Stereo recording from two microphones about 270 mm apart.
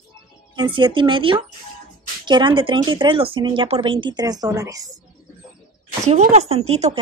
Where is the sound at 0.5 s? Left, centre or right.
Centre.